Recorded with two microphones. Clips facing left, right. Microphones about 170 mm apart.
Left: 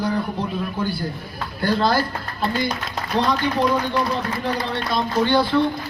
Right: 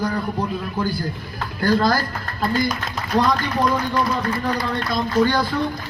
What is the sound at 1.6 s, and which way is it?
Speech, 45° right (ahead or behind).